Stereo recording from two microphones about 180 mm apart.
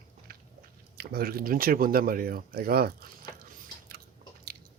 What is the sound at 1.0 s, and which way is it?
Speech, 55° right (ahead or behind).